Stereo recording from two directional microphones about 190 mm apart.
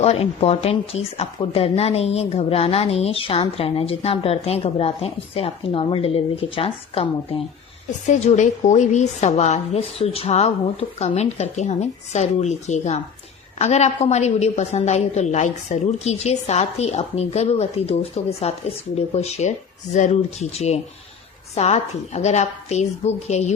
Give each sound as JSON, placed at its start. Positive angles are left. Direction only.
{"t": 0.0, "sound": "speech", "side_deg": 30}